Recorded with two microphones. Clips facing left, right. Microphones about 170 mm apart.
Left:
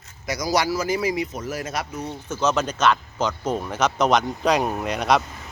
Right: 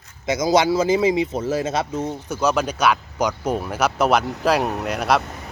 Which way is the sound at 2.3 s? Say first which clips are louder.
Right 1 dB; 10° right (ahead or behind).